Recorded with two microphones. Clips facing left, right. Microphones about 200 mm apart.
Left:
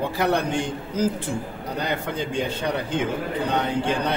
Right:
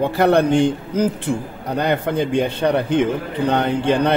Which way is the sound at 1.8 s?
60° right (ahead or behind).